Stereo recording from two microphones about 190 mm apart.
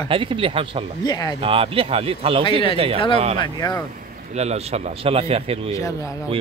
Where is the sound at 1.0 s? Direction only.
20° left (ahead or behind).